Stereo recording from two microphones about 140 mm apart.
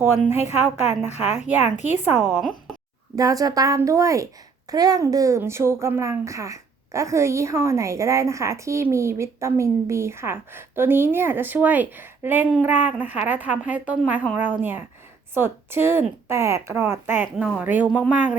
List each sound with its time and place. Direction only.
0.0 s speech: 15° right (ahead or behind)
1.5 s speech: 15° right (ahead or behind)
1.7 s a woman's voice: 55° left (ahead or behind)
2.0 s speech: 5° right (ahead or behind)
3.2 s a woman's voice: 25° right (ahead or behind); by 18.3 s 10° right (ahead or behind)